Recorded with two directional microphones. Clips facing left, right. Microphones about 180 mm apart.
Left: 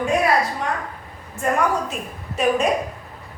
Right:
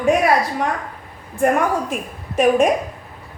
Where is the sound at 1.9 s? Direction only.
50° right (ahead or behind).